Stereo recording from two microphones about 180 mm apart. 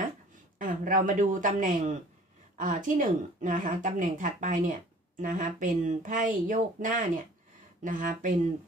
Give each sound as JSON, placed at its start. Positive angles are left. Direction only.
{"t": 0.6, "sound": "a woman's voice", "side_deg": -45}